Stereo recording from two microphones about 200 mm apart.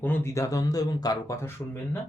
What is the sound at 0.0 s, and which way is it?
Speech, 10° left (ahead or behind).